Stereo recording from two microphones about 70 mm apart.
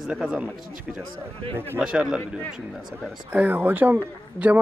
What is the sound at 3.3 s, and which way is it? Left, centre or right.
Speech, right.